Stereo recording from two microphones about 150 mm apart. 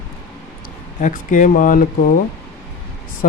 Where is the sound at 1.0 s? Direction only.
60° left (ahead or behind).